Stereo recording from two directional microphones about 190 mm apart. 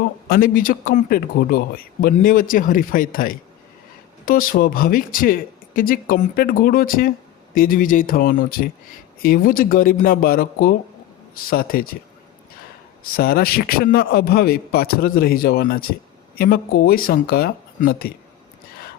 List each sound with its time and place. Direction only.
0.3 s speech: 50° left (ahead or behind)
13.1 s speech: 50° left (ahead or behind)